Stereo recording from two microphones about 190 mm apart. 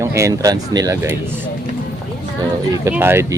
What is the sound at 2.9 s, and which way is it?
Speech, 10° right (ahead or behind).